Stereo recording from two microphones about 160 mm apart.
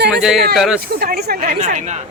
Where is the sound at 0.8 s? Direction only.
75° right (ahead or behind).